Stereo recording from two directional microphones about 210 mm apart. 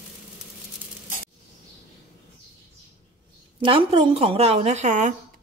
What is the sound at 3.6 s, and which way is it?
A woman's voice, 25° right (ahead or behind).